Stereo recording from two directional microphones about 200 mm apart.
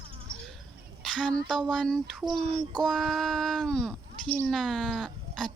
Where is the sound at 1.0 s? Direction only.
5° left (ahead or behind).